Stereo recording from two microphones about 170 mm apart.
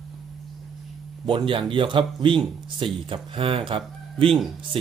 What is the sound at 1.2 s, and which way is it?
Speech, 30° right (ahead or behind).